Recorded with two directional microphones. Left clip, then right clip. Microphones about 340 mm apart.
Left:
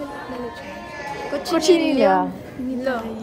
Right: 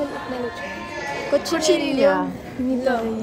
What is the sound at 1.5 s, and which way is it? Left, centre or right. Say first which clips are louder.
Speech: left 8 dB; left.